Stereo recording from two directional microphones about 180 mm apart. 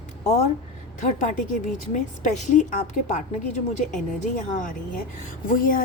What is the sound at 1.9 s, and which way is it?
A woman's voice, 45° left (ahead or behind).